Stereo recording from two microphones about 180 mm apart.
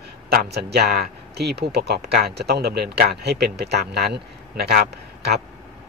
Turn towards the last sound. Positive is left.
turn(degrees=-60)  # may be behind; listen again after turning